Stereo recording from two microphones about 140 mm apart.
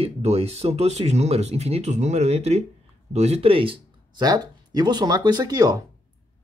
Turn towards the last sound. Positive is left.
turn(degrees=-25)  # may be behind; listen again after turning